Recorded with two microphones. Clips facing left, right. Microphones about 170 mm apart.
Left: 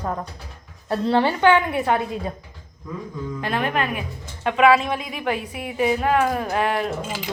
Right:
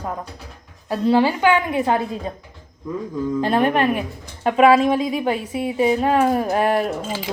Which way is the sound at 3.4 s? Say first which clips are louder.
Right 6 dB; 35° right (ahead or behind).